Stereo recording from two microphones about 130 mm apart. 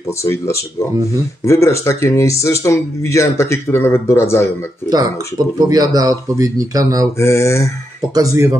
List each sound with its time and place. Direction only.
0.2 s speech: 20° left (ahead or behind)
4.8 s speech: 30° right (ahead or behind)
7.2 s speech: 20° left (ahead or behind)
8.1 s speech: 25° right (ahead or behind)